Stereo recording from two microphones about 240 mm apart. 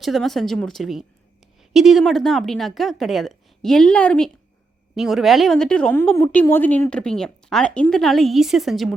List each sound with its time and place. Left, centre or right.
0.0 s a woman's voice: centre